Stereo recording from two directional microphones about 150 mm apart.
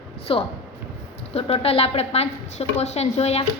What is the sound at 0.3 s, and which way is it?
A woman's voice, 35° left (ahead or behind).